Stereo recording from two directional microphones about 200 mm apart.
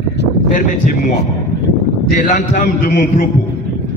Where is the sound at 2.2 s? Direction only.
50° left (ahead or behind).